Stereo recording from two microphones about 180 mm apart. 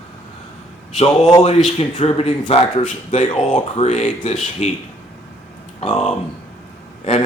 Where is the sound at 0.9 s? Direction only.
35° left (ahead or behind).